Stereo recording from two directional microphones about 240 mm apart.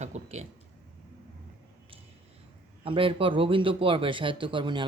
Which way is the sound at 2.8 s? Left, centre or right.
Right.